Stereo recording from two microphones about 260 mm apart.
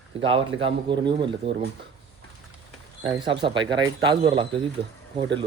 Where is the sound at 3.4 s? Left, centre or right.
Centre.